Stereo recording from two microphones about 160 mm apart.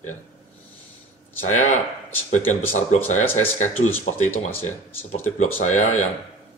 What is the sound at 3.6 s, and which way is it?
Speech, 45° left (ahead or behind).